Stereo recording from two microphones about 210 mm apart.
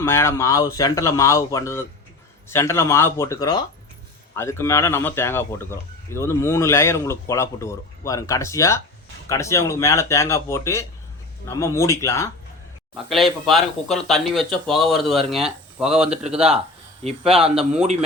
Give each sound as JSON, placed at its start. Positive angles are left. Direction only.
{"t": 0.0, "sound": "speech", "side_deg": 10}
{"t": 12.9, "sound": "speech", "side_deg": 0}
{"t": 17.0, "sound": "speech", "side_deg": -30}